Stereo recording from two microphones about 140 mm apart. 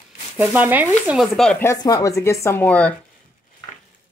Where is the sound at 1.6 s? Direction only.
20° left (ahead or behind).